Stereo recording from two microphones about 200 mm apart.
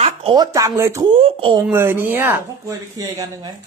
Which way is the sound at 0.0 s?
25° right (ahead or behind).